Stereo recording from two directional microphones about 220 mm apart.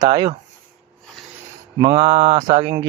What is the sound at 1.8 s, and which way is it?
Mantra, 20° right (ahead or behind).